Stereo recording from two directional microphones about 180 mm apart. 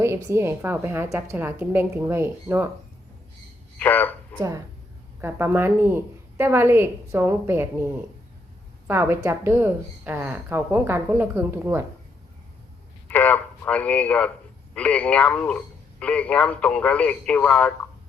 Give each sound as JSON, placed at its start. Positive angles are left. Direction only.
{"t": 0.0, "sound": "a woman's voice", "side_deg": -15}
{"t": 3.8, "sound": "a sound", "side_deg": 10}
{"t": 4.4, "sound": "a woman's voice", "side_deg": -15}
{"t": 13.1, "sound": "a man's voice", "side_deg": 10}